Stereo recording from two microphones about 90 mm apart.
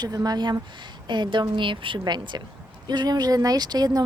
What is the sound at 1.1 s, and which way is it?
A woman's voice, 60° right (ahead or behind).